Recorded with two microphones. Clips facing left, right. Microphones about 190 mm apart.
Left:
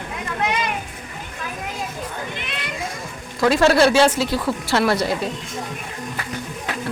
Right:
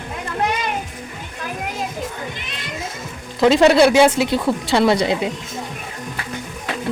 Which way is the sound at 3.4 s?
20° right (ahead or behind).